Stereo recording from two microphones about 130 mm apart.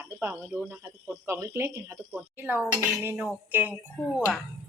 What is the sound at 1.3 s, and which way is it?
Speech, 20° right (ahead or behind).